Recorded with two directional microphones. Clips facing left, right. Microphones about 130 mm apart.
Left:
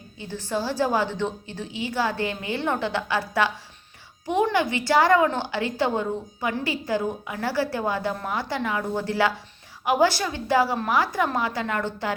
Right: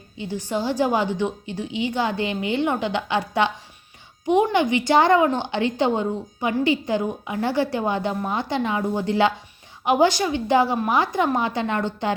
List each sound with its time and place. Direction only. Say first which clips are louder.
0.2 s a woman's voice: right 3 dB; 15° right (ahead or behind)